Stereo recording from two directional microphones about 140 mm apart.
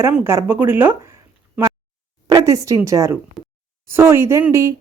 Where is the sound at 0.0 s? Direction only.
10° right (ahead or behind).